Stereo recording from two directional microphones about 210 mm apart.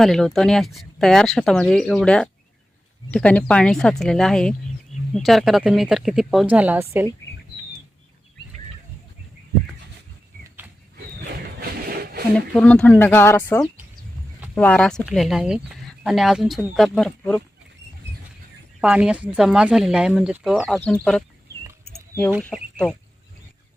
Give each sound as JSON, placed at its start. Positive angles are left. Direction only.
{"t": 0.0, "sound": "speech", "side_deg": 0}
{"t": 11.9, "sound": "a sound", "side_deg": -45}
{"t": 12.5, "sound": "speech", "side_deg": 5}
{"t": 18.8, "sound": "speech", "side_deg": -5}
{"t": 21.7, "sound": "a sound", "side_deg": -15}
{"t": 22.4, "sound": "speech", "side_deg": 5}